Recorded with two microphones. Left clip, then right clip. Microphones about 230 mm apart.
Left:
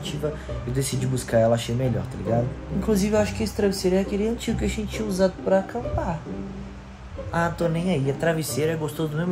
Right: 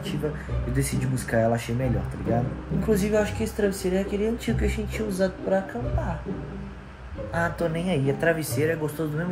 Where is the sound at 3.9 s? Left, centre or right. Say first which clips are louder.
Left 2 dB; centre.